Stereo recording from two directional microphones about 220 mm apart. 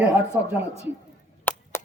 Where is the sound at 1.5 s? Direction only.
5° left (ahead or behind).